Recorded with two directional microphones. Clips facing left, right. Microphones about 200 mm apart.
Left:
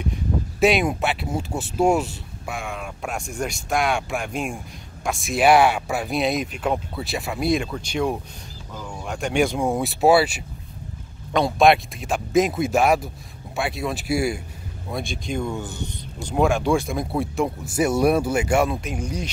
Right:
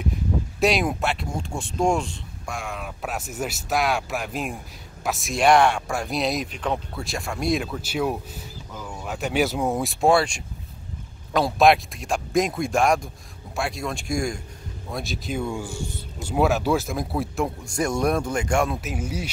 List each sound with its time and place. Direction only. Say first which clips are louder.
0.6 s speech: left 3 dB; centre (ahead or behind)